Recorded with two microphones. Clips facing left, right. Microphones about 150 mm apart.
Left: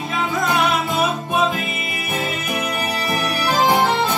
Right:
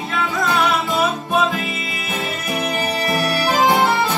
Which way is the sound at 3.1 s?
Centre (ahead or behind).